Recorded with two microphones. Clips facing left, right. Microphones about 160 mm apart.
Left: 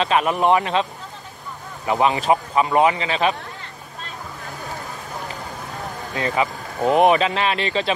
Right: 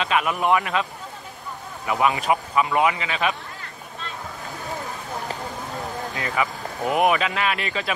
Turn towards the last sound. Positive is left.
turn(degrees=30)  # may be behind; listen again after turning